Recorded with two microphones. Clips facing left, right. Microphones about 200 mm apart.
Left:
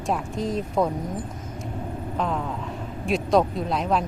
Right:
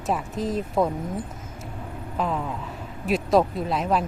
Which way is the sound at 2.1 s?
5° right (ahead or behind).